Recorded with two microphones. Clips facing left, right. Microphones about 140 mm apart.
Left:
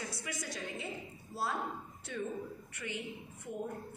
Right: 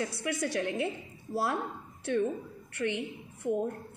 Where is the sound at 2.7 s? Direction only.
70° right (ahead or behind).